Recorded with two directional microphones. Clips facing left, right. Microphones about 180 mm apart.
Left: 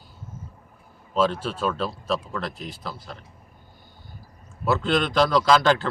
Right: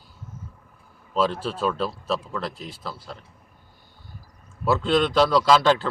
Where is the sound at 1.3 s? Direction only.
35° right (ahead or behind).